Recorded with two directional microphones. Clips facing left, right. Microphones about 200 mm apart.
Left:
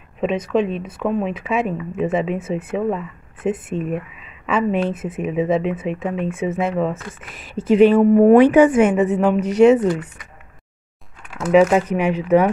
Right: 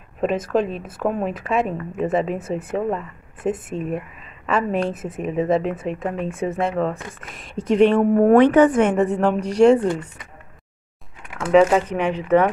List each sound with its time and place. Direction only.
0.2 s speech: centre (ahead or behind)
9.8 s speech: 25° right (ahead or behind)
11.5 s speech: 10° left (ahead or behind)